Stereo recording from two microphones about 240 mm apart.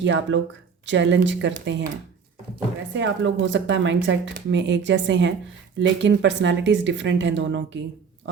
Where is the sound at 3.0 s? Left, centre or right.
Right.